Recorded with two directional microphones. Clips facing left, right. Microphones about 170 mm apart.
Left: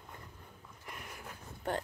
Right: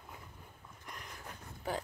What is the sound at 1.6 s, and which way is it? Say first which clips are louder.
Speech: left 2 dB; centre (ahead or behind).